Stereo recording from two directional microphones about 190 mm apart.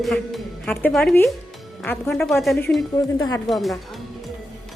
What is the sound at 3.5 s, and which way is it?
Speech, centre (ahead or behind).